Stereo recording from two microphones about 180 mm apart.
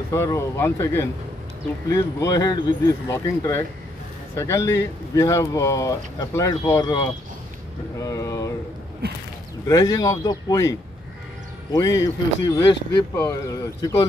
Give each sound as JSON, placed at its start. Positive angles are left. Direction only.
{"t": 0.1, "sound": "speech", "side_deg": 15}
{"t": 8.0, "sound": "a sound", "side_deg": 20}
{"t": 9.7, "sound": "speech", "side_deg": 20}